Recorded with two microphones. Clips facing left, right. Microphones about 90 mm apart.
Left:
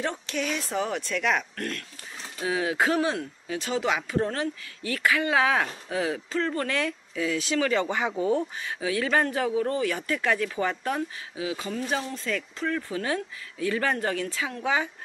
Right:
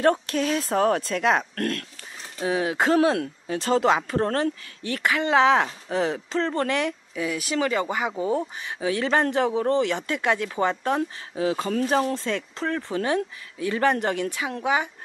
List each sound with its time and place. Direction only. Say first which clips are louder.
0.3 s speech: right 5 dB; 40° right (ahead or behind)
1.5 s speech: right 6 dB; 50° right (ahead or behind)
2.4 s speech: right 2 dB; 30° right (ahead or behind)
6.7 s speech: right 3 dB; 20° right (ahead or behind)
7.9 s speech: right 1 dB; 10° right (ahead or behind)
8.2 s speech: even; 25° right (ahead or behind)
11.0 s speech: right 5 dB; 45° right (ahead or behind)
12.2 s speech: right 2 dB; 30° right (ahead or behind)